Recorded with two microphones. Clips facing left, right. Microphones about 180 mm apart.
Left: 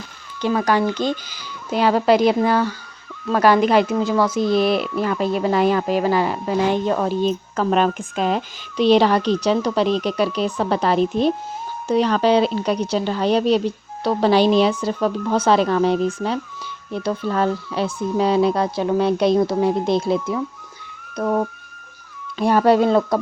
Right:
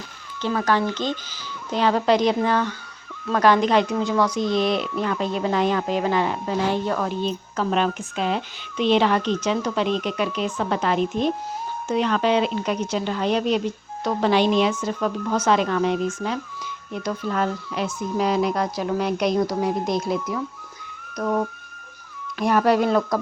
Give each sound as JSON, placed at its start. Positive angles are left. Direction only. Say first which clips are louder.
{"t": 0.4, "sound": "speech", "louder": "left 3 dB", "side_deg": 10}
{"t": 6.7, "sound": "speech", "louder": "left 4 dB", "side_deg": 20}
{"t": 7.3, "sound": "speech", "louder": "left 4 dB", "side_deg": 45}
{"t": 22.4, "sound": "speech", "louder": "left 4 dB", "side_deg": 30}